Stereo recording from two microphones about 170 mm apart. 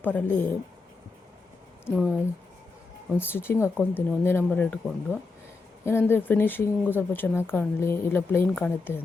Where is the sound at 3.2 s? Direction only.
15° left (ahead or behind).